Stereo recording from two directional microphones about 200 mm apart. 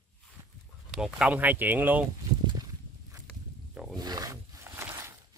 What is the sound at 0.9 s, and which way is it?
Speech, 5° right (ahead or behind).